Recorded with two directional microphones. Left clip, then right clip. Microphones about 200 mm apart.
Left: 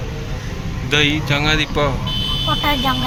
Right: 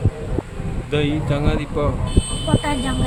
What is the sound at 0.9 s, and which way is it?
Speech, 10° right (ahead or behind).